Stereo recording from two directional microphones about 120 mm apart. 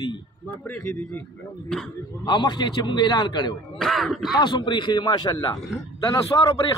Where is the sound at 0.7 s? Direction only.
20° left (ahead or behind).